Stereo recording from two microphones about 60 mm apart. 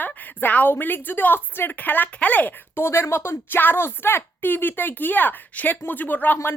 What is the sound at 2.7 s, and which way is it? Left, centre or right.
Speech, left.